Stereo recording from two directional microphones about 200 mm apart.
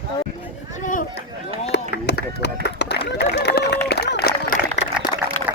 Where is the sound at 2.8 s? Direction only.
60° left (ahead or behind).